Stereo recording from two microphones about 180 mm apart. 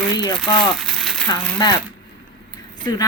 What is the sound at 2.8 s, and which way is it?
Speech, 25° left (ahead or behind).